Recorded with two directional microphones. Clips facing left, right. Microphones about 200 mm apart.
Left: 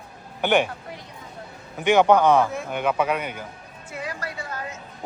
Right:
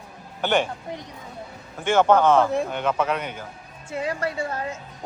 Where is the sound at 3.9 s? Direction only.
25° right (ahead or behind).